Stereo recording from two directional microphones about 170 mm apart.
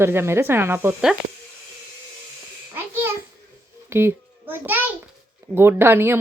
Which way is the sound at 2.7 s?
15° right (ahead or behind).